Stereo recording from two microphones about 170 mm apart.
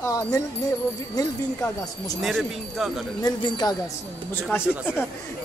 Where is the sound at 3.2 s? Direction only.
25° left (ahead or behind).